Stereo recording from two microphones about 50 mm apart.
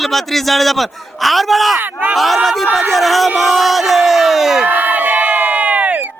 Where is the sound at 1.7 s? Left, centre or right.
Right.